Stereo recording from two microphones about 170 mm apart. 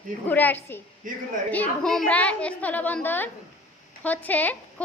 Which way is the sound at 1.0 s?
50° right (ahead or behind).